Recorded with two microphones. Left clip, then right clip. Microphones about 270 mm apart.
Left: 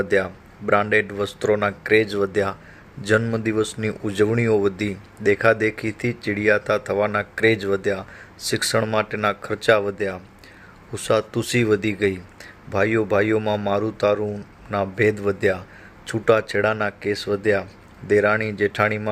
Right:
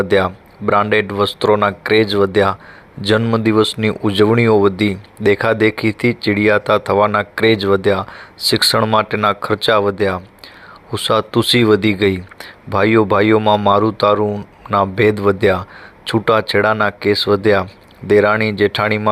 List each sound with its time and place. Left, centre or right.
0.0 s speech: centre